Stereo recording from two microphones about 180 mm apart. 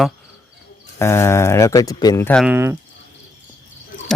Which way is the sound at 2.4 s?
10° right (ahead or behind).